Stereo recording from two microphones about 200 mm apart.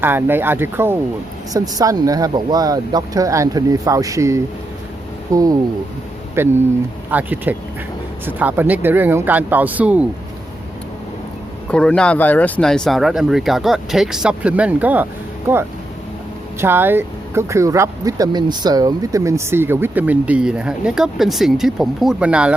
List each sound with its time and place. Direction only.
0.0 s speech: 10° right (ahead or behind)
11.7 s speech: 5° left (ahead or behind)
16.6 s speech: 10° right (ahead or behind)